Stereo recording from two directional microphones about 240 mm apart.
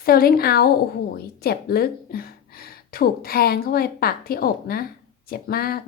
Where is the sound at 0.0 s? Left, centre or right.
Left.